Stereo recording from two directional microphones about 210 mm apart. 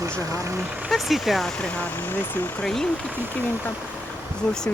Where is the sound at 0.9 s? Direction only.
Centre (ahead or behind).